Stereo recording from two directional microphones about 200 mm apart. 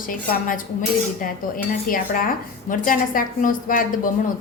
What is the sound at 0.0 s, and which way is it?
A woman's voice, 45° left (ahead or behind).